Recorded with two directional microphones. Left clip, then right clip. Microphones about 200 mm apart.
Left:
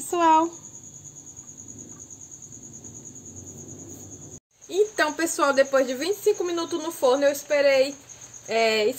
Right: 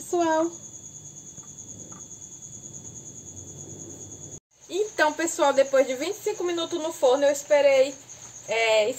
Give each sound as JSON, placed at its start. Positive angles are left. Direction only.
{"t": 0.1, "sound": "speech", "side_deg": 50}
{"t": 4.6, "sound": "speech", "side_deg": 40}